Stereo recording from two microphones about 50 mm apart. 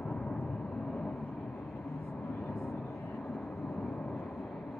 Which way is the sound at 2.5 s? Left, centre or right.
Left.